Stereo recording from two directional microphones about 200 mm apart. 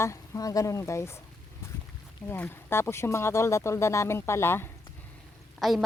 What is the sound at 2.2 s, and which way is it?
Speech, 10° left (ahead or behind).